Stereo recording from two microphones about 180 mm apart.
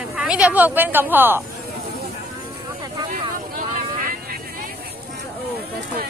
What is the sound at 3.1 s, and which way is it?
Vehicle, 50° right (ahead or behind).